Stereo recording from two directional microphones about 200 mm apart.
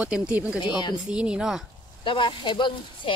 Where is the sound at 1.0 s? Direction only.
5° right (ahead or behind).